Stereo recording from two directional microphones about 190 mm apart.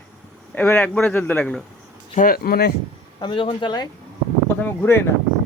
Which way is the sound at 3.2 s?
25° left (ahead or behind).